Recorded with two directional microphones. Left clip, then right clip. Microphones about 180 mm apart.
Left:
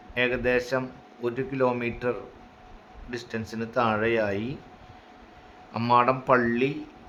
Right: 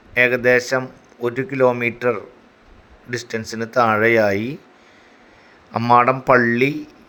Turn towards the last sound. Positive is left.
turn(degrees=-30)  # may be behind; listen again after turning